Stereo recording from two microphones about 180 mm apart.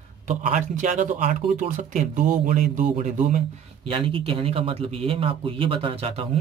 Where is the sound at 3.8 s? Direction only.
30° right (ahead or behind).